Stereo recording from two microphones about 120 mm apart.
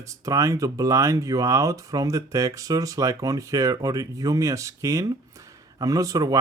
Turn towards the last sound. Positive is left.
turn(degrees=-30)  # may be behind; listen again after turning